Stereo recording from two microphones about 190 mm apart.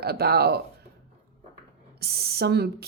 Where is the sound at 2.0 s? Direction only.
55° right (ahead or behind).